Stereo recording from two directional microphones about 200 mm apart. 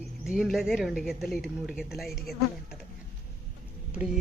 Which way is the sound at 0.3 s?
Centre (ahead or behind).